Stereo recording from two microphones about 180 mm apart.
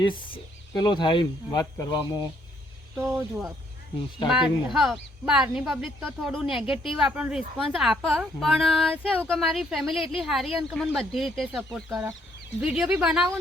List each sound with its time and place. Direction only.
0.0 s speech: 25° left (ahead or behind)
4.4 s a woman's voice: 5° right (ahead or behind)